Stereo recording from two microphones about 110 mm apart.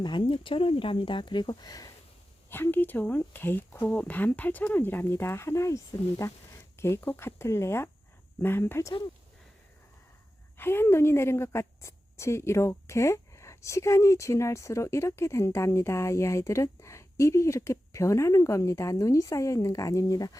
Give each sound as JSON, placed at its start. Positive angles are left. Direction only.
{"t": 0.0, "sound": "speech", "side_deg": 45}
{"t": 2.5, "sound": "a woman's voice", "side_deg": 20}
{"t": 10.6, "sound": "a woman's voice", "side_deg": 20}